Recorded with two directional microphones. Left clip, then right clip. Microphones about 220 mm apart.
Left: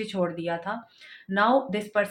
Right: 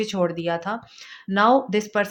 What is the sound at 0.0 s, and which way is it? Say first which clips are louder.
Speech: right 5 dB; 50° right (ahead or behind).